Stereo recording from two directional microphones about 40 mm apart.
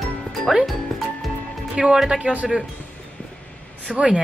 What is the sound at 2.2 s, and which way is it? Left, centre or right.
Speech, right.